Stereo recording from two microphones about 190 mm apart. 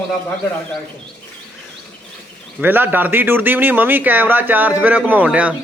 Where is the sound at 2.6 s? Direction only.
10° right (ahead or behind).